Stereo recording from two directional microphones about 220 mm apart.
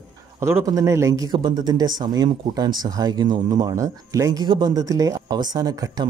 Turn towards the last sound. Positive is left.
turn(degrees=-20)  # may be behind; listen again after turning